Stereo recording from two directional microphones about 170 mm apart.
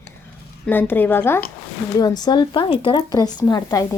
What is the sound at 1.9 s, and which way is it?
Speech, 25° left (ahead or behind).